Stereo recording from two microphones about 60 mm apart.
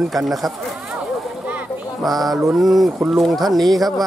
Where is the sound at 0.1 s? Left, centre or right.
Centre.